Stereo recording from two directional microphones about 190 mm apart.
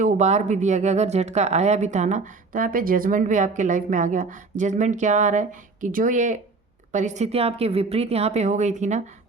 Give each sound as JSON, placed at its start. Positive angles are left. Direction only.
{"t": 0.0, "sound": "speech", "side_deg": -35}